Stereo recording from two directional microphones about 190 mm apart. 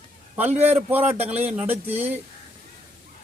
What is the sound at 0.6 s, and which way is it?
Speech, 10° right (ahead or behind).